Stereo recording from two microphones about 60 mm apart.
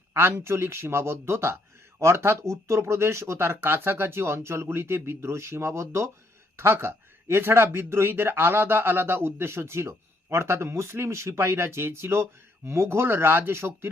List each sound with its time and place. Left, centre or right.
0.1 s speech: right